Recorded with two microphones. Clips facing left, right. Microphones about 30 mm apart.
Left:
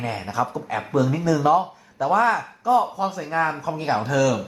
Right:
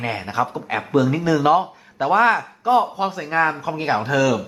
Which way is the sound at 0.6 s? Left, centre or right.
Right.